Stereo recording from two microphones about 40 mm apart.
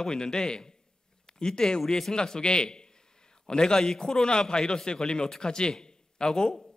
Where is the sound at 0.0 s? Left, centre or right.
Centre.